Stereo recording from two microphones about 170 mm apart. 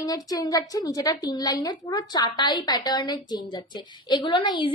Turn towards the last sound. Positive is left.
turn(degrees=30)  # may be behind; listen again after turning